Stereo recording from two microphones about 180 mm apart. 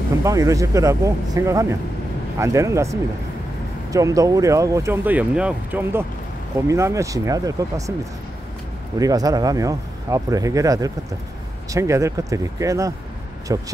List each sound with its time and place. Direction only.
0.2 s speech: 15° right (ahead or behind)
8.9 s speech: 20° right (ahead or behind)